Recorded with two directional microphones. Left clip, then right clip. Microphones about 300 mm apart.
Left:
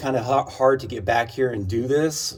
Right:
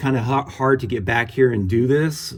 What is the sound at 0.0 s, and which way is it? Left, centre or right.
Speech, centre.